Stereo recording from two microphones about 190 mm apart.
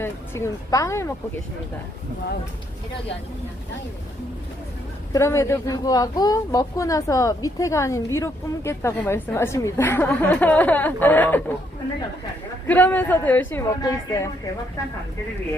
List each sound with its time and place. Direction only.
0.0 s speech: 15° left (ahead or behind)
5.1 s speech: 15° left (ahead or behind)
12.6 s speech: 10° left (ahead or behind)